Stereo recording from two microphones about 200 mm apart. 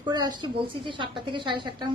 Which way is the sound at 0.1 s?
20° right (ahead or behind).